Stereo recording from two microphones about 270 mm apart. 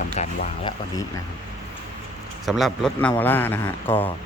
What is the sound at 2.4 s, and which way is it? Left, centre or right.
A man's voice, centre.